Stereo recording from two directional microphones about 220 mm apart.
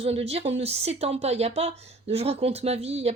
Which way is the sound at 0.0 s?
30° right (ahead or behind).